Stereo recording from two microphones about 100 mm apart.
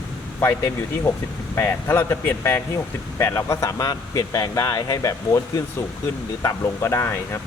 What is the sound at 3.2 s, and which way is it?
Speech, 30° left (ahead or behind).